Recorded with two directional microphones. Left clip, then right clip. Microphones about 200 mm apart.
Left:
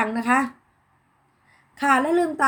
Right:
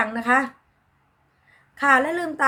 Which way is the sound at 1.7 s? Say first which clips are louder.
Right 1 dB; centre (ahead or behind).